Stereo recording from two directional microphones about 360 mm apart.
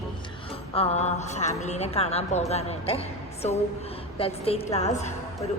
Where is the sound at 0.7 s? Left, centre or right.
Centre.